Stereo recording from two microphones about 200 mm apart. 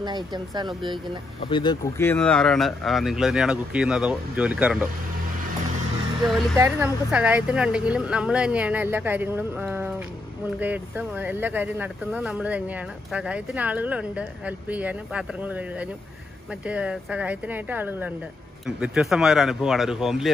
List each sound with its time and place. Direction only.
0.0 s speech: 20° right (ahead or behind)
1.5 s speech: 20° left (ahead or behind); by 4.8 s 5° right (ahead or behind)
6.6 s speech: 10° right (ahead or behind)